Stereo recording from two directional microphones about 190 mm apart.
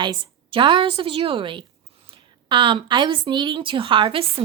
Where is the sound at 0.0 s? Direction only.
25° right (ahead or behind).